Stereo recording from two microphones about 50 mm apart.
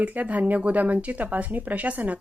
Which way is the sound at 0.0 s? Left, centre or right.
Right.